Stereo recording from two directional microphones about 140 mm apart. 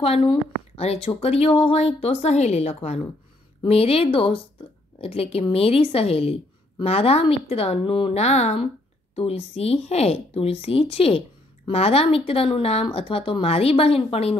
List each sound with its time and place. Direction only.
0.0 s speech: 40° left (ahead or behind)